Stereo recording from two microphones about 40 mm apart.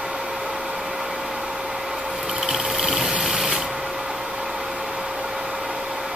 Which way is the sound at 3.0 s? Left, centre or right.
Centre.